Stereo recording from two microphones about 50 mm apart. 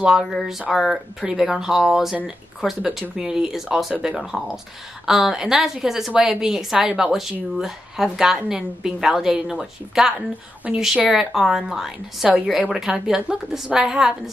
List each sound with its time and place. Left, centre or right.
0.0 s a woman's voice: centre
10.1 s a woman's voice: right
11.1 s a woman's voice: centre